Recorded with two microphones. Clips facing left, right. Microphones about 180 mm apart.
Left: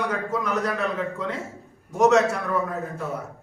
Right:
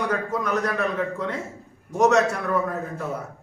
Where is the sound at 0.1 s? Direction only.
5° left (ahead or behind).